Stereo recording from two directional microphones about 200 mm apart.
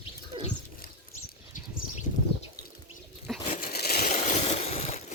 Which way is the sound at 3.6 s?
50° left (ahead or behind).